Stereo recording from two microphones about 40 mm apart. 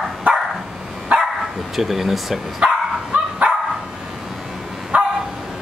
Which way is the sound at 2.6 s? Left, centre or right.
Right.